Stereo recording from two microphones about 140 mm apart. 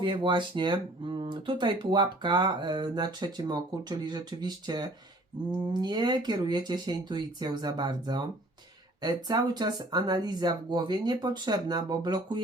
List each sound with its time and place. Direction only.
0.0 s speech: 35° right (ahead or behind)